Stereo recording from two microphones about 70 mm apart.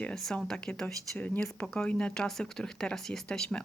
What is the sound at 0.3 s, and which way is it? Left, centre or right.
Speech, centre.